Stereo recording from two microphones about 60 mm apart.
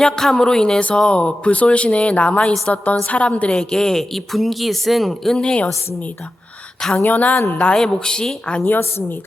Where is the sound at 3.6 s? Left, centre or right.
Centre.